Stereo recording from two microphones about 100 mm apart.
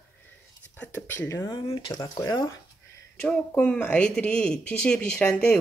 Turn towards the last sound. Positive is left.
turn(degrees=10)  # may be behind; listen again after turning